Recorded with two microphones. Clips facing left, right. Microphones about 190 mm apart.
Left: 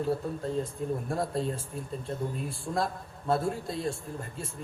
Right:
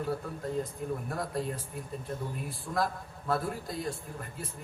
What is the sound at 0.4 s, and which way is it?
Speech, 25° left (ahead or behind).